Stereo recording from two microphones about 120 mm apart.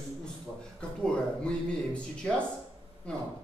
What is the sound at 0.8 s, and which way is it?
Speech, 10° left (ahead or behind).